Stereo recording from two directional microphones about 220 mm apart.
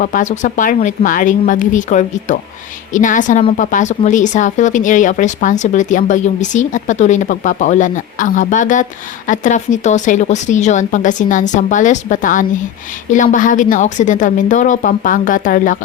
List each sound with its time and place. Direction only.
0.0 s a woman's voice: 35° left (ahead or behind)